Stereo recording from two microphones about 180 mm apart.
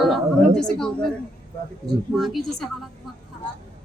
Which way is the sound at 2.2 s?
Centre (ahead or behind).